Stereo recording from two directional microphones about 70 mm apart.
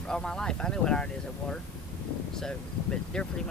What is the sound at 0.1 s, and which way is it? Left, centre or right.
Speech, centre.